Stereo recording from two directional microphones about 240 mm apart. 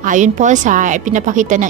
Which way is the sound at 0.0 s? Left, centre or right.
Right.